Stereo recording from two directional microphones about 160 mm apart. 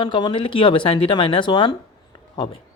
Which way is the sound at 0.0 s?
30° left (ahead or behind).